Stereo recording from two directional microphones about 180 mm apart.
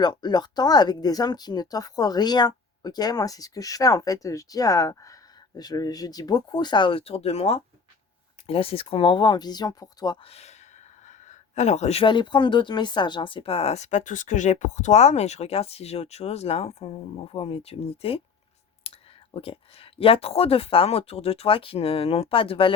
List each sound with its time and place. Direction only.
0.0 s speech: 25° left (ahead or behind)